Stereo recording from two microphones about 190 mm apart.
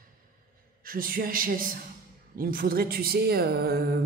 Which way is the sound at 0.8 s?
50° right (ahead or behind).